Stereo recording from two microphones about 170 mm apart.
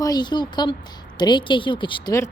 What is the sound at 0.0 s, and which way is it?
Speech, 25° left (ahead or behind).